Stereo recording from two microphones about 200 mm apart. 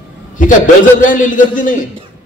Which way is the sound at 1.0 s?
40° left (ahead or behind).